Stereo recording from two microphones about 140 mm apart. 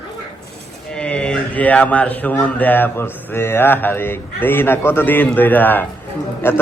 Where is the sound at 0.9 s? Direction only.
5° left (ahead or behind).